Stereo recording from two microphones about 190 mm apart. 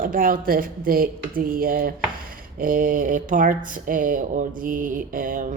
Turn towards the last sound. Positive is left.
turn(degrees=-45)  # may be behind; listen again after turning